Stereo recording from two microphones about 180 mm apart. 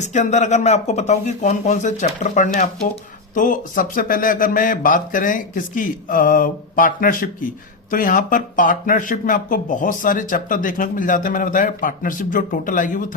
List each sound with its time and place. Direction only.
0.0 s speech: 40° left (ahead or behind)